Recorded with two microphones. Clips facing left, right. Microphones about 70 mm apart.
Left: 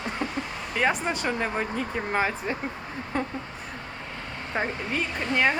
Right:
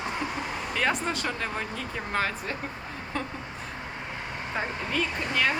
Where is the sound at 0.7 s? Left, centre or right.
Centre.